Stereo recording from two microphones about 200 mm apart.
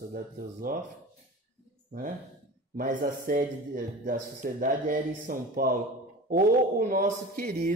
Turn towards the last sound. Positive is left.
turn(degrees=-40)  # may be behind; listen again after turning